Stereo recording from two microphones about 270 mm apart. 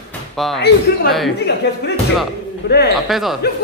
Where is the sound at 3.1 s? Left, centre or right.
Centre.